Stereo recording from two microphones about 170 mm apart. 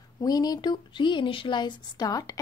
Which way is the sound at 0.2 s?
20° left (ahead or behind).